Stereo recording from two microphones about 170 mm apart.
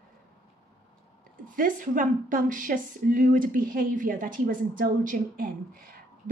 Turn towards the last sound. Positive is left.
turn(degrees=-55)  # may be behind; listen again after turning